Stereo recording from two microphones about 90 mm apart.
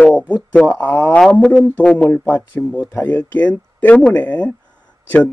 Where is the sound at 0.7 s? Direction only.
20° left (ahead or behind).